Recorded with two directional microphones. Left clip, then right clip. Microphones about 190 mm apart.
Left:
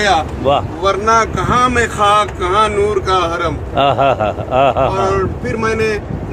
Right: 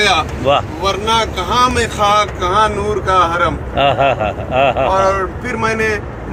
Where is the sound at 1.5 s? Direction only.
10° right (ahead or behind).